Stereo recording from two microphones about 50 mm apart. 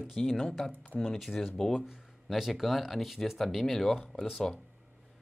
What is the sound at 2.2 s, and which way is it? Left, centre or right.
Speech, centre.